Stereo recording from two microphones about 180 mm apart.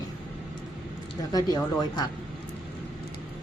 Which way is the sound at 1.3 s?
20° left (ahead or behind).